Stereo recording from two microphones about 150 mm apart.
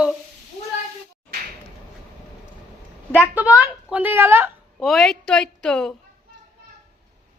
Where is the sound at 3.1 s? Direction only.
10° right (ahead or behind).